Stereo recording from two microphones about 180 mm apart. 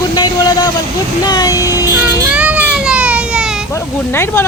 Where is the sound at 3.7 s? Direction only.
15° left (ahead or behind).